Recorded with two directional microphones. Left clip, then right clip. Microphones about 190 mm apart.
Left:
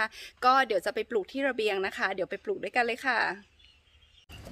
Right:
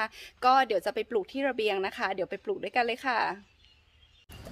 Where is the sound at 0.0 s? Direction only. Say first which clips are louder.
Left 1 dB; 5° left (ahead or behind).